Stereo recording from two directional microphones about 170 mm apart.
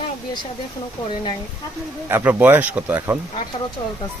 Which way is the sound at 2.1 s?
10° right (ahead or behind).